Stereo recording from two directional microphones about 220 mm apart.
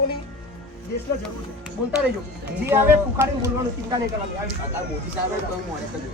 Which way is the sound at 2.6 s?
10° right (ahead or behind).